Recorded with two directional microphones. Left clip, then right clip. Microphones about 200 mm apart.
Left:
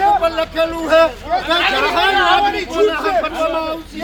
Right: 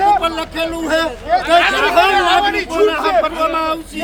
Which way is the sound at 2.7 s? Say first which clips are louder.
Right 3 dB; 35° right (ahead or behind).